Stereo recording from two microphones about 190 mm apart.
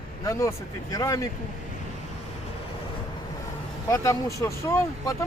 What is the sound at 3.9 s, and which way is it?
Speech, 15° left (ahead or behind).